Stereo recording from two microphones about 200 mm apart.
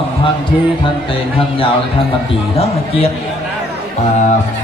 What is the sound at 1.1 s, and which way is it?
A man's voice, 25° left (ahead or behind).